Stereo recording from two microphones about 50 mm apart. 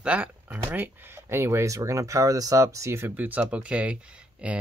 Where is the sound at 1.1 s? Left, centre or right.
Right.